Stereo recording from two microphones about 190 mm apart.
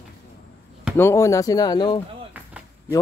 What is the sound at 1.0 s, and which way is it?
Speech, 15° left (ahead or behind).